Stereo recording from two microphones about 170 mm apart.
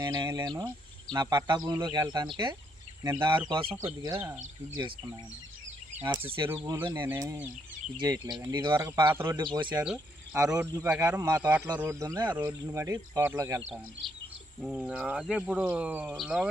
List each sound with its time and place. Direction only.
0.0 s speech: 20° right (ahead or behind)
3.0 s speech: 15° right (ahead or behind)
3.5 s speech: 30° right (ahead or behind)
4.1 s speech: 15° right (ahead or behind)
6.1 s speech: 30° right (ahead or behind)
7.1 s speech: 15° right (ahead or behind)
9.4 s speech: 30° right (ahead or behind)
14.6 s speech: centre (ahead or behind)